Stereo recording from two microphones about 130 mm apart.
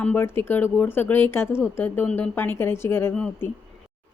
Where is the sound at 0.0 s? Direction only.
15° left (ahead or behind).